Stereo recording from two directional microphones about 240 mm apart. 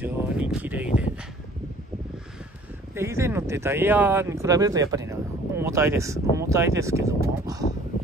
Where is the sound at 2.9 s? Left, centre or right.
Centre.